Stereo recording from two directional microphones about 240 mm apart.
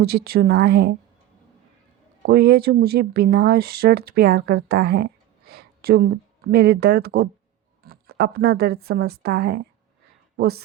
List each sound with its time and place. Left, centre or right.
0.0 s speech: right
2.2 s a woman's voice: right